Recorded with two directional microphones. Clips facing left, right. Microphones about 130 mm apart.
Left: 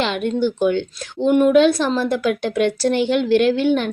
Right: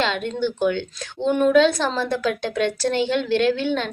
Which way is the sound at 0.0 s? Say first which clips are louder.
Left 3 dB; 15° left (ahead or behind).